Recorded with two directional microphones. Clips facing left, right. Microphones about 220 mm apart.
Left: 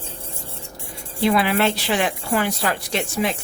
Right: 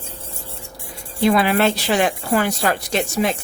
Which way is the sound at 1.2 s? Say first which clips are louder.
Right 2 dB; 45° right (ahead or behind).